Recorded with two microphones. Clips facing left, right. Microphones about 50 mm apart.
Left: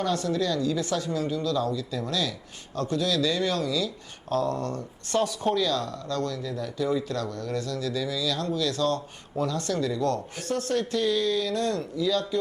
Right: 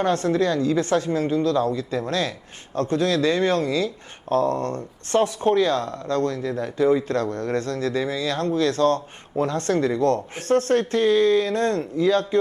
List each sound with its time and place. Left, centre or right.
0.0 s speech: right